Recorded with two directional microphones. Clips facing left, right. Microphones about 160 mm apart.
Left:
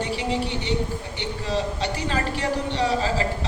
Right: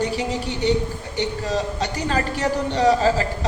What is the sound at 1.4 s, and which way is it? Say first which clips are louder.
Speech: right 2 dB; 45° right (ahead or behind).